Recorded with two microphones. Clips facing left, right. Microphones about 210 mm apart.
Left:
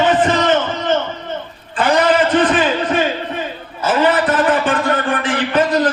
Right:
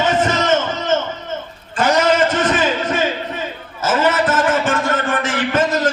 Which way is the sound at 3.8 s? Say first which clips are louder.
Left 2 dB; 45° right (ahead or behind).